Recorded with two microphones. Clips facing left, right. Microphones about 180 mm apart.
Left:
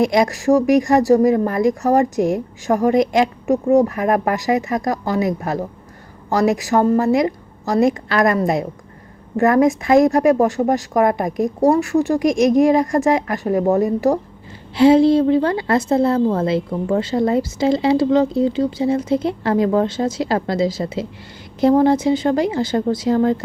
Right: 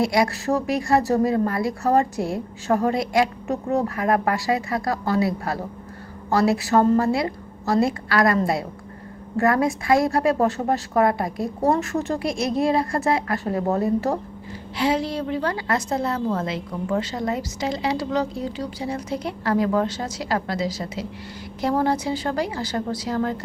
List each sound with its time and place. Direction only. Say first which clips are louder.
0.0 s a woman's voice: left 5 dB; 20° left (ahead or behind)
14.8 s a woman's voice: left 12 dB; 30° left (ahead or behind)